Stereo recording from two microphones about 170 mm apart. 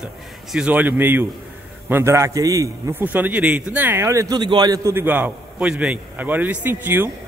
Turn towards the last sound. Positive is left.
turn(degrees=-15)  # may be behind; listen again after turning